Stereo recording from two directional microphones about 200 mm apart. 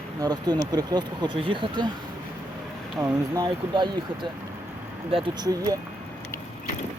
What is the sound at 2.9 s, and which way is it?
Speech, 15° right (ahead or behind).